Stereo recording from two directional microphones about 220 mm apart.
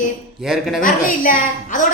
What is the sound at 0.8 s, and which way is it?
A woman's voice, 40° left (ahead or behind).